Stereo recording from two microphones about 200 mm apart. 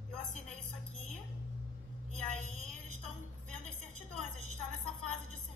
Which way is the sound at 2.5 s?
35° right (ahead or behind).